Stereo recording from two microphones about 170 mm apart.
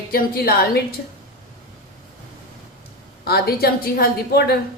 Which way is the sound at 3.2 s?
65° left (ahead or behind).